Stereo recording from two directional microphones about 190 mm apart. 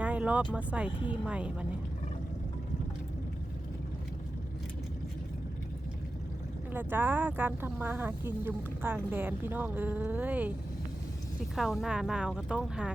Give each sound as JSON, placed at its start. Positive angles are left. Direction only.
{"t": 0.0, "sound": "vehicle", "side_deg": -5}
{"t": 0.5, "sound": "speech", "side_deg": -5}
{"t": 6.7, "sound": "speech", "side_deg": -10}
{"t": 11.5, "sound": "speech", "side_deg": 0}